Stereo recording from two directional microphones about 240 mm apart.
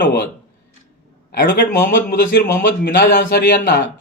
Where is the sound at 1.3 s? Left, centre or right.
Left.